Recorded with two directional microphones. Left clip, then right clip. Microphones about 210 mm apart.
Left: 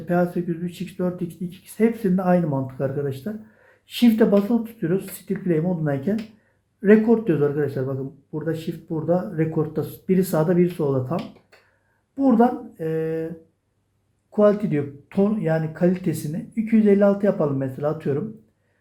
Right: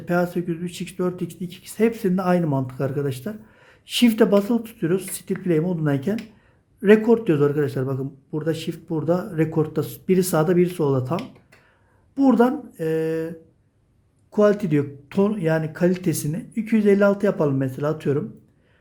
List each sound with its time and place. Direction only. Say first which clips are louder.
0.1 s a man's voice: even; 25° right (ahead or behind)
14.3 s a man's voice: even; 40° right (ahead or behind)